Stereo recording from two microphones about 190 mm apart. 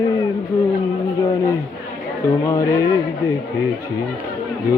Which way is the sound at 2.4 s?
15° left (ahead or behind).